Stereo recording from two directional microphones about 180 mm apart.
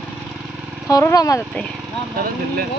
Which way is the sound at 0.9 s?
20° left (ahead or behind).